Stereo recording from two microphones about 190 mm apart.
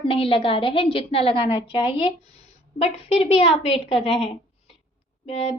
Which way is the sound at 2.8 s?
30° left (ahead or behind).